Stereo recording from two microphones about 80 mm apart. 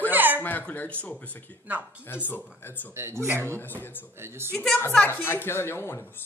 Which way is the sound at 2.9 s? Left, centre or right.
Right.